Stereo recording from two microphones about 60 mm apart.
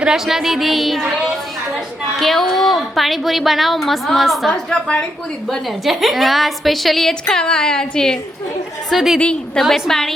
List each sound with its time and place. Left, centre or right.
0.0 s a woman's voice: centre
8.9 s a woman's voice: centre
9.1 s a woman's voice: centre
9.6 s a woman's voice: centre